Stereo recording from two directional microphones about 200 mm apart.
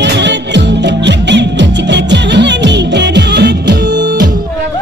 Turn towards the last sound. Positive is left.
turn(degrees=-60)  # may be behind; listen again after turning